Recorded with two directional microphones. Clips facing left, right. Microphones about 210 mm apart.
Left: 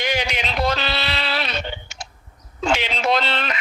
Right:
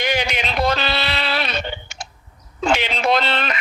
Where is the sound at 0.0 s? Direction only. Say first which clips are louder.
Right 2 dB; 55° right (ahead or behind).